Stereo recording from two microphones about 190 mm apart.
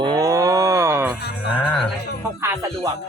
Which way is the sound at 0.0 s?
20° right (ahead or behind).